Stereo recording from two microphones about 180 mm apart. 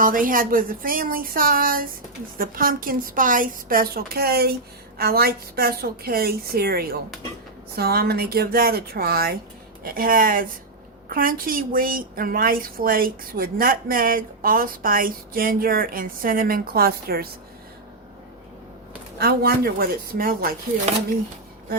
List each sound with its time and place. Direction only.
0.0 s a woman's voice: 50° right (ahead or behind)
19.2 s a woman's voice: 60° right (ahead or behind)